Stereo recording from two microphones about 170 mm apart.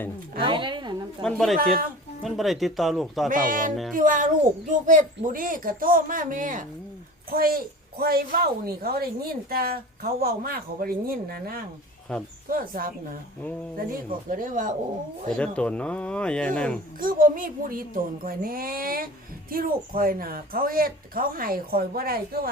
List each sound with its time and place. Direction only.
0.3 s speech: 30° right (ahead or behind)
1.2 s speech: centre (ahead or behind)
3.2 s speech: 50° right (ahead or behind)
7.3 s speech: 60° right (ahead or behind)
12.1 s speech: 5° left (ahead or behind)
12.5 s speech: 55° right (ahead or behind)
15.4 s speech: 5° left (ahead or behind)
17.0 s speech: 55° right (ahead or behind)